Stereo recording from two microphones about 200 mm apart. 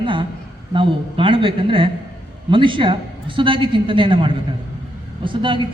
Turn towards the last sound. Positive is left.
turn(degrees=-25)  # may be behind; listen again after turning